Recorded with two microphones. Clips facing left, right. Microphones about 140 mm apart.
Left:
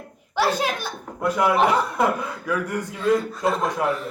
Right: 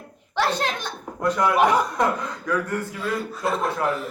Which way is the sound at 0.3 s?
10° left (ahead or behind).